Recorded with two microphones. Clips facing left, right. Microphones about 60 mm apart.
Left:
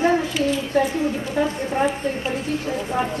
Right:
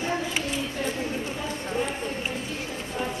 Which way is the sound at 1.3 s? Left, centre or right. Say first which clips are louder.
Left 8 dB; left.